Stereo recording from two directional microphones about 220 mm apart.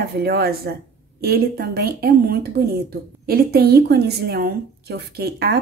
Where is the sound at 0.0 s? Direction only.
45° right (ahead or behind).